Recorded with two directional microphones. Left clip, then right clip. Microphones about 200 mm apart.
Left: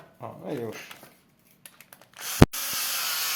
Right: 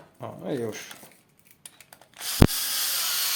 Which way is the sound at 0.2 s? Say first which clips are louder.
Right 2 dB; 30° right (ahead or behind).